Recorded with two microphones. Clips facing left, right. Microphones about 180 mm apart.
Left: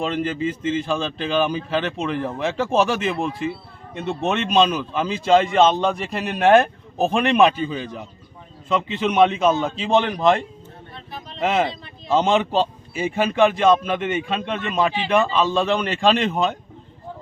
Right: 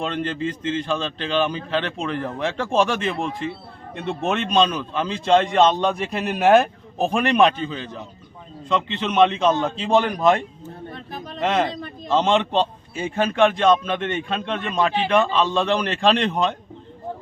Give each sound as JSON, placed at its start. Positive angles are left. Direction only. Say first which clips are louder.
{"t": 0.0, "sound": "a man's voice", "louder": "left 2 dB", "side_deg": 5}
{"t": 10.9, "sound": "a sound", "louder": "right 3 dB", "side_deg": -45}
{"t": 11.4, "sound": "a man's voice", "louder": "left 1 dB", "side_deg": 5}